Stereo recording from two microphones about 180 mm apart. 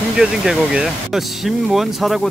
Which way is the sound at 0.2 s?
5° right (ahead or behind).